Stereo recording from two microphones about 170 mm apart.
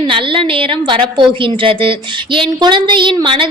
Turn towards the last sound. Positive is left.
turn(degrees=-30)  # may be behind; listen again after turning